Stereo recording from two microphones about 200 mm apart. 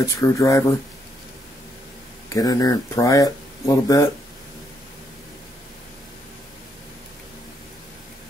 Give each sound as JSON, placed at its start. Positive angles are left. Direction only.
{"t": 0.0, "sound": "speech", "side_deg": 15}
{"t": 2.2, "sound": "speech", "side_deg": 20}